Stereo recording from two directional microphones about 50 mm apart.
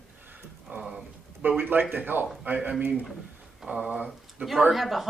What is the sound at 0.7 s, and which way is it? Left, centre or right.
A man's voice, right.